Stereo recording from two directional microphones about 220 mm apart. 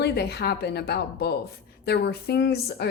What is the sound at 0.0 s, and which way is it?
A woman's voice, 50° left (ahead or behind).